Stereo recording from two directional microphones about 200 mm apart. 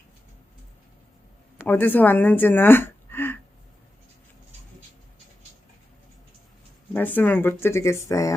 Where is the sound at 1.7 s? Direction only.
10° left (ahead or behind).